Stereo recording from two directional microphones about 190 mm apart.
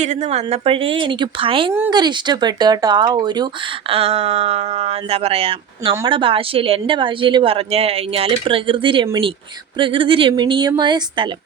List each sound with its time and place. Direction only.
0.0 s speech: 35° right (ahead or behind)